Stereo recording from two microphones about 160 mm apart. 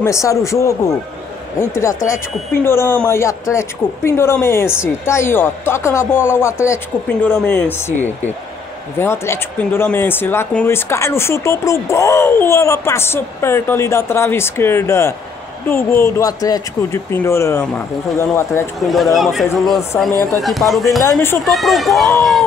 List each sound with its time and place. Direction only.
0.0 s a man's voice: 20° left (ahead or behind)
2.0 s speech: 15° left (ahead or behind)
8.9 s speech: 15° left (ahead or behind)
19.1 s speech: centre (ahead or behind)
20.1 s speech: 20° right (ahead or behind)
20.4 s speech: centre (ahead or behind)
21.0 s speech: 15° left (ahead or behind)
21.5 s speech: centre (ahead or behind)